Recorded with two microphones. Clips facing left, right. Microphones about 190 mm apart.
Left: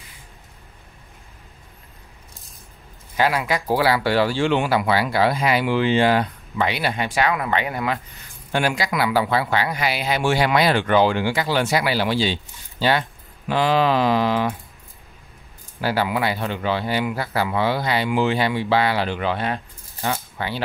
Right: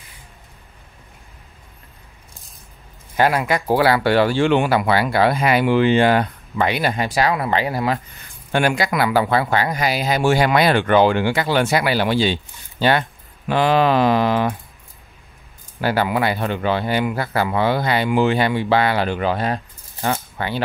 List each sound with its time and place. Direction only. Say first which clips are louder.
3.2 s speech: right 3 dB; 50° right (ahead or behind); by 8.0 s 35° right (ahead or behind)
8.5 s speech: right 3 dB; 55° right (ahead or behind)
15.8 s speech: right 3 dB; 55° right (ahead or behind)
20.0 s speech: right 3 dB; 50° right (ahead or behind)